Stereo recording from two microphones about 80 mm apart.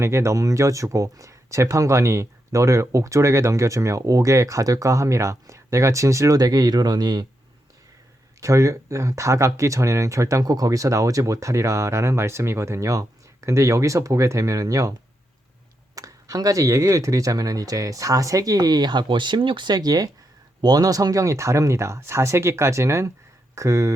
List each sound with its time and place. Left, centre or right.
0.0 s speech: right
8.4 s speech: right
16.0 s speech: right